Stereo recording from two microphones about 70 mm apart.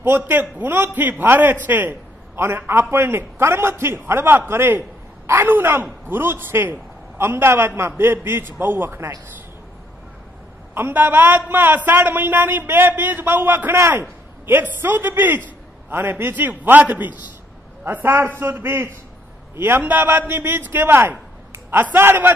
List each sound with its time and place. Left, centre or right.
0.0 s a man's voice: right
10.7 s a man's voice: right